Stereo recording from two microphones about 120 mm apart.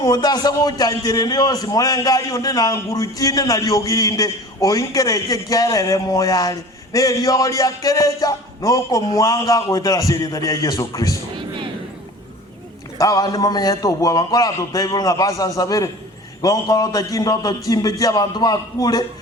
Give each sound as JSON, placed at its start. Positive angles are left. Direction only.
{"t": 0.0, "sound": "a man's voice", "side_deg": 35}
{"t": 11.3, "sound": "a sound", "side_deg": -40}
{"t": 13.0, "sound": "a man's voice", "side_deg": 30}